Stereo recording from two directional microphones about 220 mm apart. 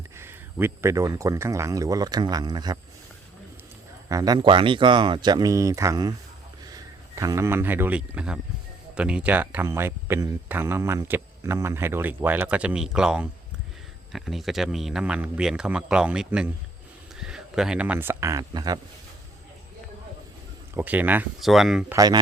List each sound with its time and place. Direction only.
0.2 s speech: 10° right (ahead or behind)
4.1 s speech: 15° right (ahead or behind)
20.7 s speech: 10° right (ahead or behind)
21.9 s speech: 15° right (ahead or behind)